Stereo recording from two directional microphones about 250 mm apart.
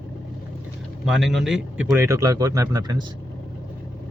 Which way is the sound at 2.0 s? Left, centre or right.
Centre.